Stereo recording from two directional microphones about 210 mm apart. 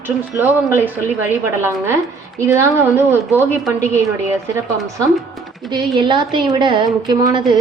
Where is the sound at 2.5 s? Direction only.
15° right (ahead or behind).